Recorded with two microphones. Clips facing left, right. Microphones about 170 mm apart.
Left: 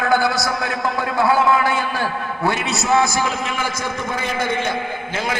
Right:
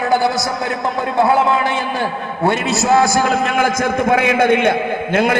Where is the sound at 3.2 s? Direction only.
50° right (ahead or behind).